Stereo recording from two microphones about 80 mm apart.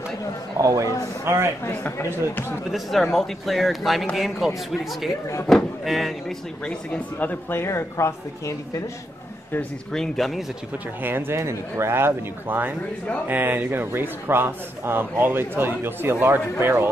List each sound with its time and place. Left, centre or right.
0.6 s a man's voice: right
1.8 s speech: left
2.7 s a man's voice: centre
5.5 s a man's voice: centre
6.9 s speech: left
9.9 s a man's voice: centre
11.0 s a man's voice: right